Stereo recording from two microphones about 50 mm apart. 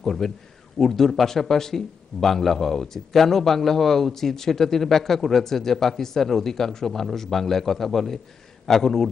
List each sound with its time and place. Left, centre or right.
0.0 s a man's voice: centre